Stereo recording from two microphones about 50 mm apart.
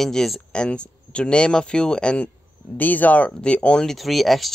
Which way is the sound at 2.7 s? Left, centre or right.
Left.